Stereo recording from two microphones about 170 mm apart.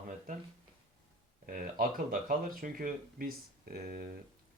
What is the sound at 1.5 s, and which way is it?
Speech, 55° right (ahead or behind).